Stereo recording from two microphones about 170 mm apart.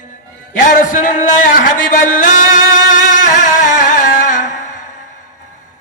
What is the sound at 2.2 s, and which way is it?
Speech, 50° left (ahead or behind).